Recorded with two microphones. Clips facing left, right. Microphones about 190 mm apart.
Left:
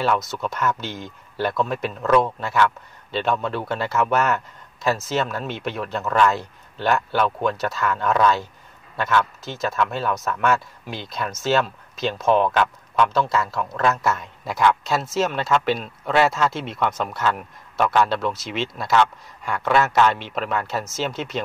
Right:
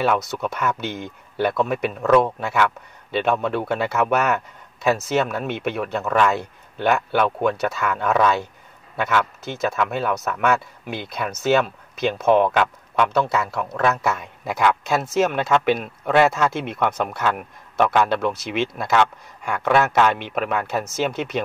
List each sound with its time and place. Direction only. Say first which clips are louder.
0.0 s a man's voice: right 1 dB; 60° right (ahead or behind)